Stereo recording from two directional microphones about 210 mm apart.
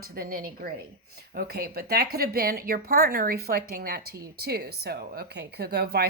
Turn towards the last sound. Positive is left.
turn(degrees=-50)  # may be behind; listen again after turning